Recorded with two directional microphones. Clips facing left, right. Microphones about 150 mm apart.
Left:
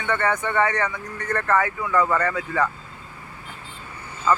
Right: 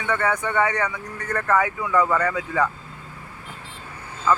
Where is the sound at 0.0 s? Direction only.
10° right (ahead or behind).